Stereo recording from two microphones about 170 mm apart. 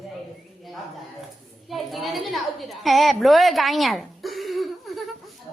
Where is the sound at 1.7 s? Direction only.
Centre (ahead or behind).